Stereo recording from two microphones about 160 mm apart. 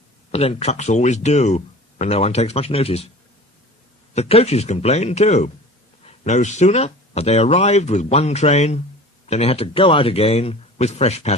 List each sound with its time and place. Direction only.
0.3 s speech: 40° left (ahead or behind)
4.1 s speech: 40° left (ahead or behind)